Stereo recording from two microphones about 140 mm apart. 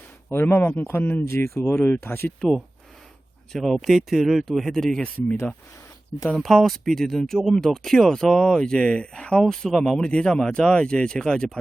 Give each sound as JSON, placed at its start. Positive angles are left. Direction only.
{"t": 0.3, "sound": "speech", "side_deg": 15}
{"t": 3.5, "sound": "speech", "side_deg": 0}